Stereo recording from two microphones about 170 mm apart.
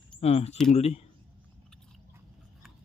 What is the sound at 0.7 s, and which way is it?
Speech, 40° left (ahead or behind).